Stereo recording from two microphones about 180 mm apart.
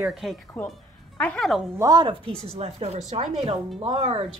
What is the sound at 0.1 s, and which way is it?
Speech, centre (ahead or behind).